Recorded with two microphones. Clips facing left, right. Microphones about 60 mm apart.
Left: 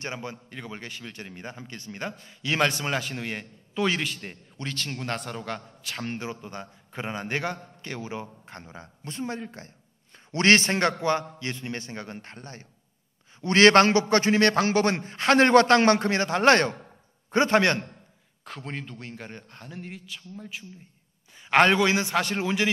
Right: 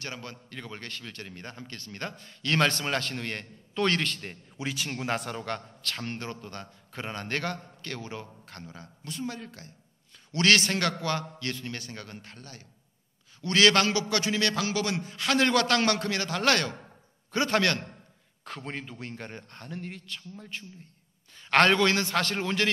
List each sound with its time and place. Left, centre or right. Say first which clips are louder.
0.0 s speech: left 4 dB; left
4.6 s a man's voice: right 1 dB; centre
5.8 s a man's voice: left 2 dB; centre
18.4 s a man's voice: left 1 dB; centre